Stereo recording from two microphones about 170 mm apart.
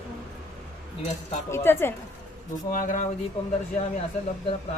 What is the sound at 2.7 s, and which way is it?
Speech, 50° left (ahead or behind).